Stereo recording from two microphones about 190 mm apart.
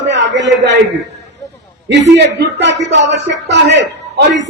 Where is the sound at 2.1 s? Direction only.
65° right (ahead or behind).